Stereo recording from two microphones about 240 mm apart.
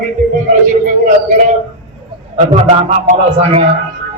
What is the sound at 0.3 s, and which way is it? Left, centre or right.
A man's voice, right.